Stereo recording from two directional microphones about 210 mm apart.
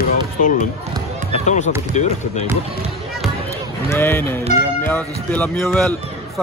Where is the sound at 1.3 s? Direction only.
35° left (ahead or behind).